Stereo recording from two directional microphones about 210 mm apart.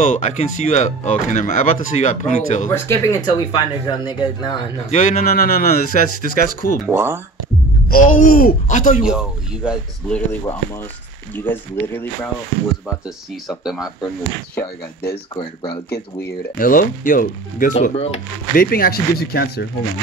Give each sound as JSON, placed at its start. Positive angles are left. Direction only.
{"t": 0.0, "sound": "speech", "side_deg": 35}
{"t": 2.7, "sound": "speech", "side_deg": 10}
{"t": 4.9, "sound": "a man's voice", "side_deg": 40}
{"t": 6.9, "sound": "speech", "side_deg": -10}
{"t": 7.9, "sound": "speech", "side_deg": 40}
{"t": 9.0, "sound": "speech", "side_deg": -5}
{"t": 11.3, "sound": "speech", "side_deg": 10}
{"t": 13.5, "sound": "speech", "side_deg": 0}
{"t": 14.0, "sound": "speech", "side_deg": 10}
{"t": 15.9, "sound": "speech", "side_deg": 45}
{"t": 18.6, "sound": "a man's voice", "side_deg": 45}